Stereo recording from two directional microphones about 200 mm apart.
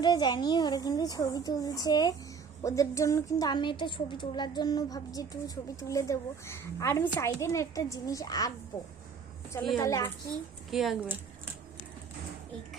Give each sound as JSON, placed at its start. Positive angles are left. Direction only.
{"t": 0.0, "sound": "a woman's voice", "side_deg": 20}
{"t": 9.7, "sound": "a woman's voice", "side_deg": 15}
{"t": 10.7, "sound": "a woman's voice", "side_deg": 0}